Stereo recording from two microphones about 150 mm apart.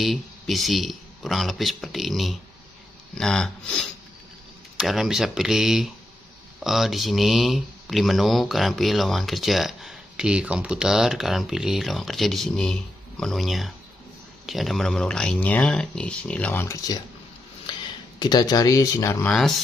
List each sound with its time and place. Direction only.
0.0 s speech: centre (ahead or behind); by 17.0 s 25° left (ahead or behind)
18.2 s speech: 25° left (ahead or behind)
19.2 s speech: 5° left (ahead or behind)